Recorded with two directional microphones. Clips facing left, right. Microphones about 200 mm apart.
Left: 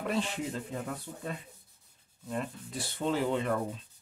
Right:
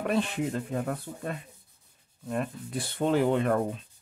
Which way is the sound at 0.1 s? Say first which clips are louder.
Right 5 dB; 55° right (ahead or behind).